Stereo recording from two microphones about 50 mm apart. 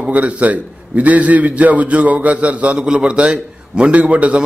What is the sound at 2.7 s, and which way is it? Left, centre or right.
A man's voice, centre.